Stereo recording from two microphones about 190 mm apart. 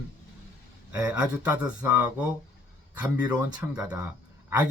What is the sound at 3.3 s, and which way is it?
Speech, 20° right (ahead or behind).